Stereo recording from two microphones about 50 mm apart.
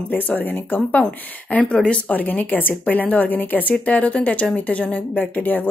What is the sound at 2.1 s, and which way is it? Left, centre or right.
Speech, left.